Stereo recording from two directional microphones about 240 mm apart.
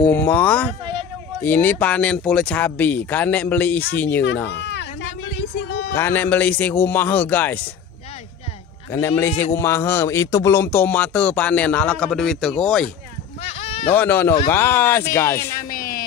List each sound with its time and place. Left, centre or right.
0.1 s speech: centre
4.5 s a sound: left
5.9 s speech: centre
8.9 s speech: centre
13.4 s sheep: left
13.9 s speech: centre
15.5 s a sound: left